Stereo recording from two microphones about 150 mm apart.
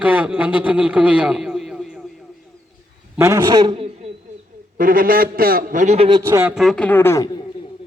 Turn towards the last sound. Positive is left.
turn(degrees=20)  # may be behind; listen again after turning